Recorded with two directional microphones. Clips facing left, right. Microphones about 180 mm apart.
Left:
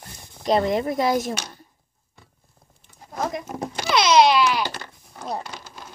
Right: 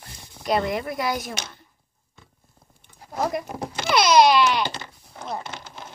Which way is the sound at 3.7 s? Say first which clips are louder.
Right 1 dB; 10° left (ahead or behind).